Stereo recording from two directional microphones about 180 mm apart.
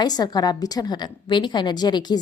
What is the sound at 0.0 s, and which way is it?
A woman's voice, 20° left (ahead or behind).